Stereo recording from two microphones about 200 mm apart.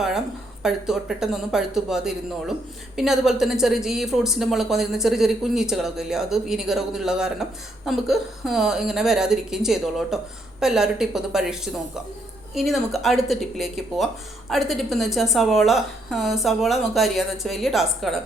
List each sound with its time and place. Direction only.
0.6 s speech: centre (ahead or behind)